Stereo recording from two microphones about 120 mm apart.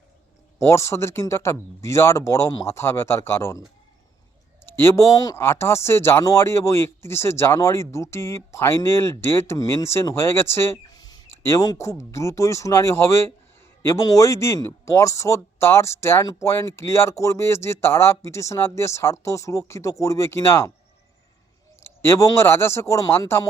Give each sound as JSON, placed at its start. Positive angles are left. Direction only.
{"t": 0.6, "sound": "speech", "side_deg": 25}
{"t": 4.6, "sound": "speech", "side_deg": 20}
{"t": 10.9, "sound": "a sound", "side_deg": 35}
{"t": 11.4, "sound": "speech", "side_deg": 30}
{"t": 21.8, "sound": "speech", "side_deg": 20}